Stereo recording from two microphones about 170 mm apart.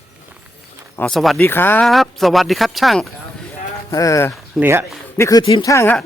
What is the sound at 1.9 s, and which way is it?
Speech, centre (ahead or behind).